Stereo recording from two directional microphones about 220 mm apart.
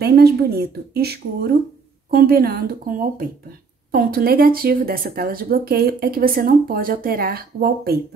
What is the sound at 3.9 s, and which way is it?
Speech, 40° right (ahead or behind).